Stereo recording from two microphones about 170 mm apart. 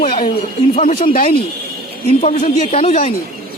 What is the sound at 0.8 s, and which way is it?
Speech, 35° left (ahead or behind).